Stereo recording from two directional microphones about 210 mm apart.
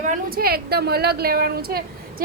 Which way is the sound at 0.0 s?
40° right (ahead or behind).